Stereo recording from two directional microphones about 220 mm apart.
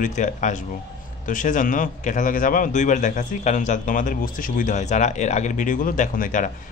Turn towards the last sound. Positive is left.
turn(degrees=35)  # may be behind; listen again after turning